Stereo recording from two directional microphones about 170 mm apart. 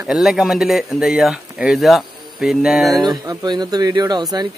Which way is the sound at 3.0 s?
25° right (ahead or behind).